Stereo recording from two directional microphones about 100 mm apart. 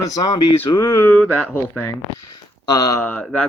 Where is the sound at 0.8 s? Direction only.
25° left (ahead or behind).